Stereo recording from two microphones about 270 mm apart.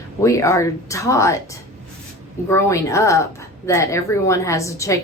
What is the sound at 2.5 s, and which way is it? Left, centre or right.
A woman's voice, centre.